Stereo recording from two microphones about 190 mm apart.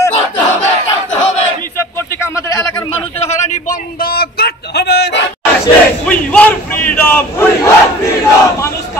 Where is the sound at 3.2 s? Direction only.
35° left (ahead or behind); by 5.2 s 60° left (ahead or behind).